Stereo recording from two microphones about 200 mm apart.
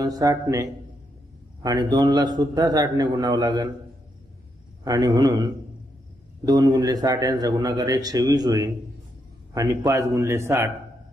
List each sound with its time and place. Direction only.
0.0 s a man's voice: 20° right (ahead or behind)
4.8 s a man's voice: 20° right (ahead or behind)